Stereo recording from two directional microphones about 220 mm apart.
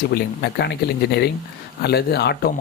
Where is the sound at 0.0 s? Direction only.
45° left (ahead or behind).